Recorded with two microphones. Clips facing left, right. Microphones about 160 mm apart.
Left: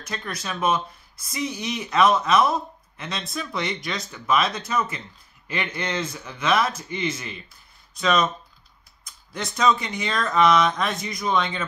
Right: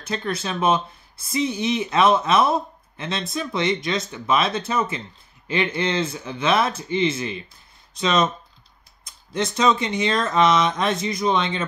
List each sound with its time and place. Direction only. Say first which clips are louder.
0.0 s speech: right 6 dB; 30° right (ahead or behind)
9.3 s speech: right 2 dB; 25° right (ahead or behind)